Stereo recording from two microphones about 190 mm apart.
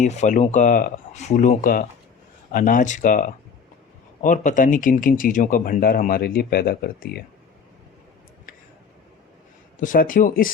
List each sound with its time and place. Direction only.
0.0 s speech: 40° left (ahead or behind)
9.8 s speech: 45° left (ahead or behind)